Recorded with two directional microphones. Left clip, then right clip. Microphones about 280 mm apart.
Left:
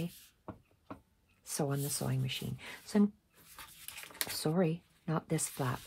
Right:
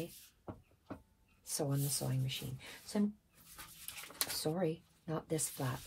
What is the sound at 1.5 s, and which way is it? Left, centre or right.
Speech, left.